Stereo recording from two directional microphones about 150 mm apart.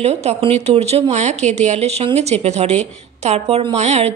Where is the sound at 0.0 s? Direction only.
45° right (ahead or behind).